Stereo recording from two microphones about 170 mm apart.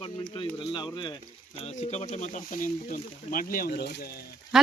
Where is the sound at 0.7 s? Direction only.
30° left (ahead or behind).